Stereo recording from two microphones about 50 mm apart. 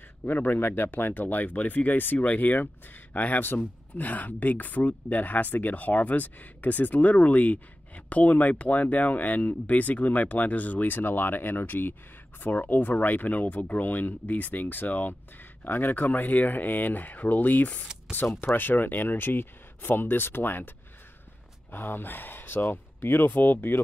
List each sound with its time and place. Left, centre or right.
0.3 s speech: left
21.7 s speech: left